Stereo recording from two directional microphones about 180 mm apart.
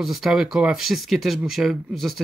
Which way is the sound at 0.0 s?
Centre (ahead or behind).